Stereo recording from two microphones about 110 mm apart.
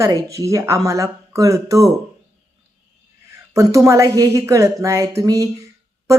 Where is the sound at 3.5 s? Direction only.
30° right (ahead or behind).